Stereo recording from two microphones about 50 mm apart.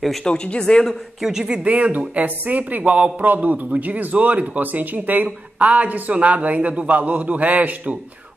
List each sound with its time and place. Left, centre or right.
0.2 s speech: centre
1.2 s speech: centre
1.6 s speech: right